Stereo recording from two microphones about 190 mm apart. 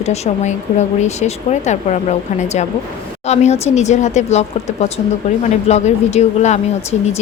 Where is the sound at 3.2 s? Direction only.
35° left (ahead or behind).